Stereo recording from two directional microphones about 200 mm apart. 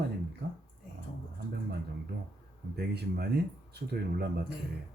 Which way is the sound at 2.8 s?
50° right (ahead or behind).